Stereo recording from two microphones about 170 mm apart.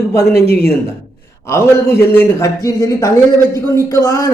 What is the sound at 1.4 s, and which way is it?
A man's voice, 15° left (ahead or behind).